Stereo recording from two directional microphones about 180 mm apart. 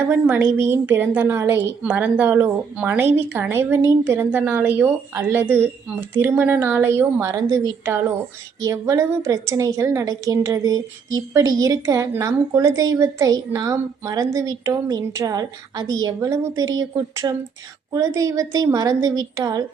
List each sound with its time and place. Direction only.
0.1 s a woman's voice: 15° right (ahead or behind)
8.6 s a woman's voice: 15° right (ahead or behind)